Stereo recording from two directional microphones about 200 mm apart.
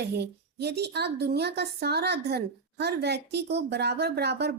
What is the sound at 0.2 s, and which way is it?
A woman's voice, 55° right (ahead or behind).